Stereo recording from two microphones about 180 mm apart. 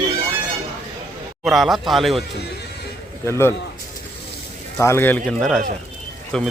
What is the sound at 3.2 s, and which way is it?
Speech, 15° left (ahead or behind).